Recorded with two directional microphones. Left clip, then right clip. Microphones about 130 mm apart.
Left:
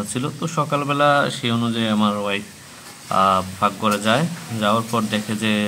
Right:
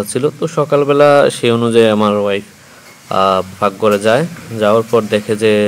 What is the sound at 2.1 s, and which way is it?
Speech, 35° right (ahead or behind).